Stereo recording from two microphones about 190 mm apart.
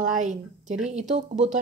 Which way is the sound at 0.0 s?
40° right (ahead or behind).